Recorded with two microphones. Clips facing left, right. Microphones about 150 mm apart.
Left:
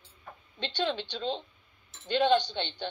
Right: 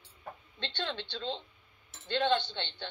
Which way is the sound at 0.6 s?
15° left (ahead or behind).